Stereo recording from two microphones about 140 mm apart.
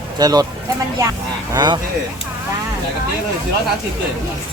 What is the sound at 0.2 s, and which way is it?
Speech, 25° right (ahead or behind).